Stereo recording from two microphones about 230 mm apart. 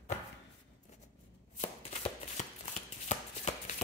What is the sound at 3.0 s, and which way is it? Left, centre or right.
Chopping, left.